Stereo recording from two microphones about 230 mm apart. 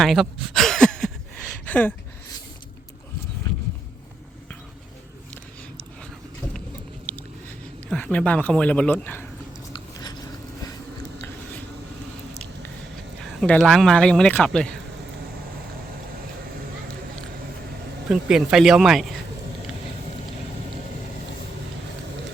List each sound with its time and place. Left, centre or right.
0.0 s a sound: centre
7.9 s speech: centre
9.7 s biting: centre
12.3 s a sound: centre
13.4 s speech: centre
18.1 s speech: centre